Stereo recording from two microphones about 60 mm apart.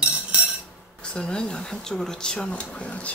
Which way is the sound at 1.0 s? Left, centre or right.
Centre.